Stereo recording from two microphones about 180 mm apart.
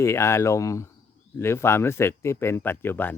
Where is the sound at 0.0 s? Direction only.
15° left (ahead or behind).